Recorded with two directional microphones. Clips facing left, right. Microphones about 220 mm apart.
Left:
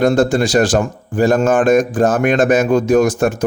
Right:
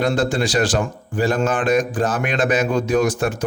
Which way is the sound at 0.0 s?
45° left (ahead or behind).